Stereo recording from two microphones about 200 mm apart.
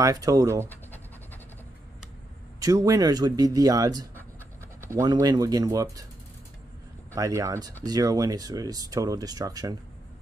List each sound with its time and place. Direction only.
0.0 s speech: 20° right (ahead or behind)
0.7 s scratch: 10° left (ahead or behind)
2.6 s speech: 15° right (ahead or behind)
7.2 s speech: 15° right (ahead or behind)